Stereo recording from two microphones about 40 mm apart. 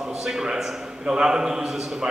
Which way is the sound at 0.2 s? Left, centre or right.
Centre.